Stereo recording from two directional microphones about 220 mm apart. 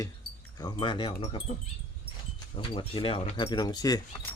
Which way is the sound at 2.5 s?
25° left (ahead or behind).